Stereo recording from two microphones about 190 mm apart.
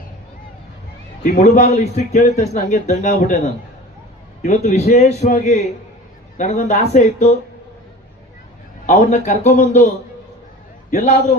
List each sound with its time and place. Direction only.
1.2 s a man's voice: 40° left (ahead or behind)
8.9 s a man's voice: 35° left (ahead or behind)
10.9 s a man's voice: 35° left (ahead or behind)